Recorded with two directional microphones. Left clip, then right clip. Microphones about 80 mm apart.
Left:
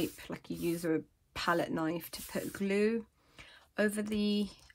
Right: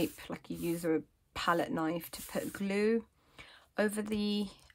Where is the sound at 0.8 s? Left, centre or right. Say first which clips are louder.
Right 1 dB; right.